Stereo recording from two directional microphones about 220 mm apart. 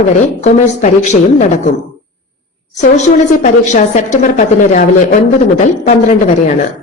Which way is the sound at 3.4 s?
35° left (ahead or behind).